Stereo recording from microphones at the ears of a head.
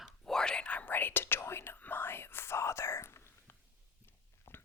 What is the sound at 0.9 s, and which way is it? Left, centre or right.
Whispering, left.